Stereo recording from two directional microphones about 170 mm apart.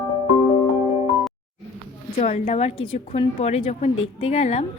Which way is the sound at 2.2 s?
40° left (ahead or behind).